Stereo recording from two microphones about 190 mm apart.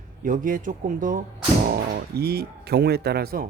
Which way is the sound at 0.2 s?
45° right (ahead or behind).